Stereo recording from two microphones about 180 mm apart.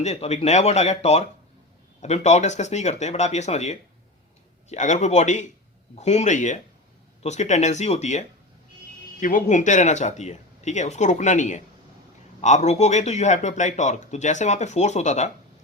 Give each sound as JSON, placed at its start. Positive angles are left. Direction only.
{"t": 0.0, "sound": "speech", "side_deg": 35}
{"t": 9.2, "sound": "speech", "side_deg": 45}